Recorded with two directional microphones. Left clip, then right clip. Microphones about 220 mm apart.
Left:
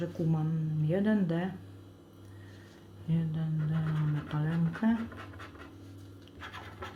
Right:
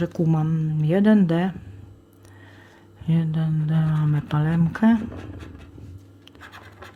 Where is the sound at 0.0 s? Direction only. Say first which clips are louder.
Right 10 dB; 45° right (ahead or behind).